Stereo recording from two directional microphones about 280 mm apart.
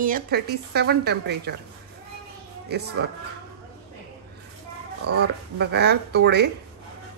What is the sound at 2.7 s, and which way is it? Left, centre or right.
Speech, right.